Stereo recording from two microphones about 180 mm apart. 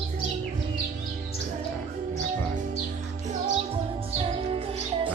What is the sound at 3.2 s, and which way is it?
Music, 35° right (ahead or behind).